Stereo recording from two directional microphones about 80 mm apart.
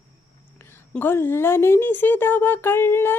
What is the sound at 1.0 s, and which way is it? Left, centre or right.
A woman's voice, left.